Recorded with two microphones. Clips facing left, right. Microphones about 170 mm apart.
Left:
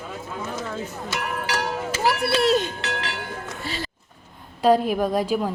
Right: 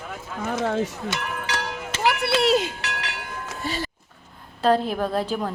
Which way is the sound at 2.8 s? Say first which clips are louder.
Left 3 dB; 30° left (ahead or behind).